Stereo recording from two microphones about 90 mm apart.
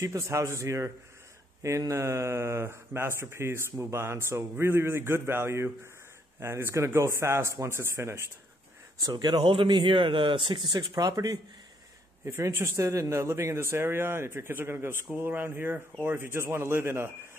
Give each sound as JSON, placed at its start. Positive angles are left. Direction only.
{"t": 0.0, "sound": "speech", "side_deg": -35}
{"t": 9.0, "sound": "speech", "side_deg": -50}
{"t": 9.4, "sound": "speech", "side_deg": -75}
{"t": 12.3, "sound": "speech", "side_deg": -30}